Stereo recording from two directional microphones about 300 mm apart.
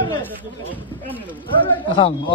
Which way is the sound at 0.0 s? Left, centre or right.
Centre.